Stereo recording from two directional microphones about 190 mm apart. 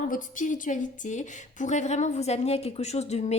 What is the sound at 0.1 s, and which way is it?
A woman's voice, 45° left (ahead or behind).